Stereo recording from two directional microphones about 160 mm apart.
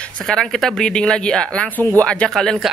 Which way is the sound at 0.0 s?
5° left (ahead or behind).